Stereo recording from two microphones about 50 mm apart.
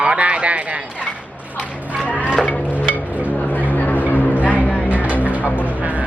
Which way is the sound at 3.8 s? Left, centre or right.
Left.